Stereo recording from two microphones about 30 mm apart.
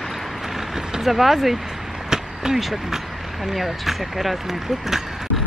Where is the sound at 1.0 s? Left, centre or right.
Centre.